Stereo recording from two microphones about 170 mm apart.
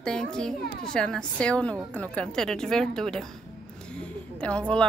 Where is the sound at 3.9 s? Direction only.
5° left (ahead or behind).